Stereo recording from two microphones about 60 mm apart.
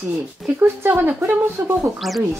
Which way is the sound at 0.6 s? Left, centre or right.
Right.